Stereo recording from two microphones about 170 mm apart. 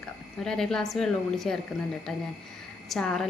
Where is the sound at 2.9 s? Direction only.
Centre (ahead or behind).